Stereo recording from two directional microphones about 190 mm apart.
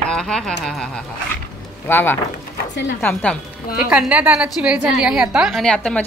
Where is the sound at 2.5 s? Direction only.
65° left (ahead or behind).